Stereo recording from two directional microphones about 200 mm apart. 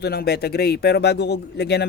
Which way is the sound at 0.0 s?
55° left (ahead or behind).